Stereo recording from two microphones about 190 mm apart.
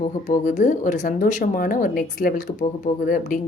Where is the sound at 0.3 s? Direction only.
40° left (ahead or behind).